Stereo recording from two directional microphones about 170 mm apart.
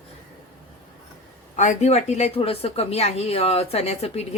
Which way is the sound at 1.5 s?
45° left (ahead or behind).